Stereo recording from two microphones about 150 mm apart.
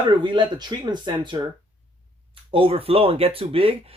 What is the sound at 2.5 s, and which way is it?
Speech, 40° right (ahead or behind).